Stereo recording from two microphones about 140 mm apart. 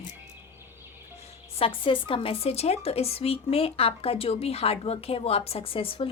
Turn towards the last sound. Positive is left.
turn(degrees=40)  # may be behind; listen again after turning